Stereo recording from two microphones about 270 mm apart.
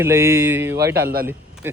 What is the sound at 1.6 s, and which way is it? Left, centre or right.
Speech, centre.